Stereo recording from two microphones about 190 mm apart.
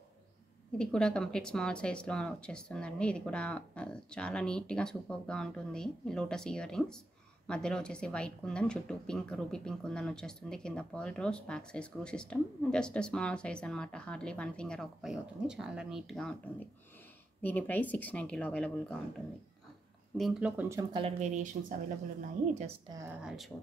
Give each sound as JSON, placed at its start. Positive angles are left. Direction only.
{"t": 0.7, "sound": "speech", "side_deg": 5}
{"t": 20.2, "sound": "speech", "side_deg": 0}
{"t": 20.9, "sound": "speech", "side_deg": -30}
{"t": 22.8, "sound": "speech", "side_deg": -15}
{"t": 23.2, "sound": "speech", "side_deg": 0}